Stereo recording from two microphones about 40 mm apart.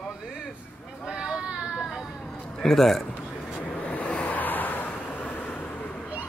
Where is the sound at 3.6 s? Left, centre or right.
Left.